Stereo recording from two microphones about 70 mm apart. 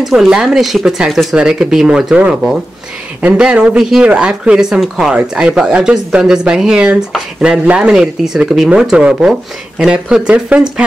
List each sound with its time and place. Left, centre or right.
0.0 s speech: centre